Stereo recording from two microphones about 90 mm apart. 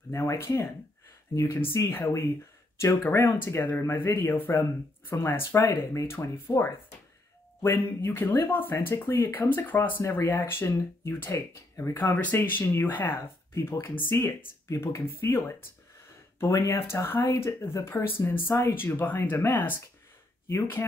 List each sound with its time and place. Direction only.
0.1 s speech: 30° left (ahead or behind)
12.0 s speech: 20° left (ahead or behind)